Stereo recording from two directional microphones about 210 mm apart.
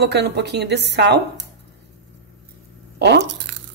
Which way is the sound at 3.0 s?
55° right (ahead or behind).